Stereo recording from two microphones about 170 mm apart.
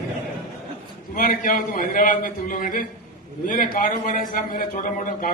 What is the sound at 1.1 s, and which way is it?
A man's voice, 50° left (ahead or behind).